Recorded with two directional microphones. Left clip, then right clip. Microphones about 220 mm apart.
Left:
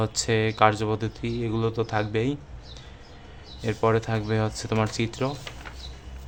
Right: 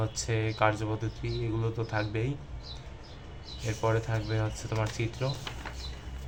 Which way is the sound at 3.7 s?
45° left (ahead or behind).